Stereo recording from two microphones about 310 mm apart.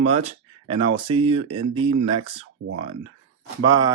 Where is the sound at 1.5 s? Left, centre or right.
Right.